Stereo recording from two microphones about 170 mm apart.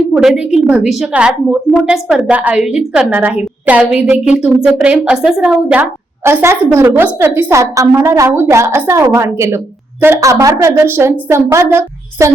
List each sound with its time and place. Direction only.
0.1 s a woman's voice: 5° right (ahead or behind)